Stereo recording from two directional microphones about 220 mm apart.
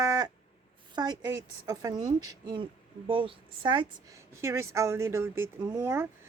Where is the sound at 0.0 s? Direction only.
15° right (ahead or behind).